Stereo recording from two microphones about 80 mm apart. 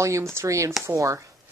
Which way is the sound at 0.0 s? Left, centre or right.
Right.